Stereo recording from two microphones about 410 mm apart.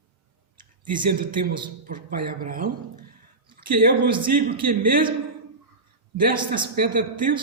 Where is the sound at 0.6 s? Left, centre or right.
Centre.